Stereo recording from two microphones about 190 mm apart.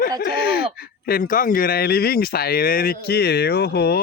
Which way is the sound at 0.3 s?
55° left (ahead or behind).